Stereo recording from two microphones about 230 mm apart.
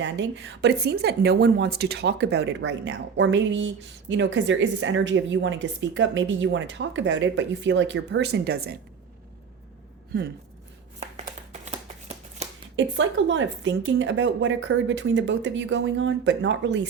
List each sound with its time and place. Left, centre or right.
0.0 s a woman's voice: right
11.6 s shuffling cards: right
12.7 s a woman's voice: right